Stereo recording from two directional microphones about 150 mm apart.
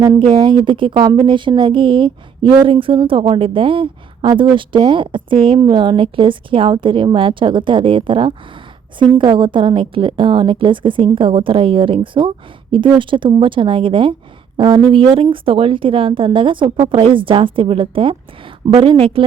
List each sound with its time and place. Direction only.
0.3 s a woman's voice: 30° right (ahead or behind)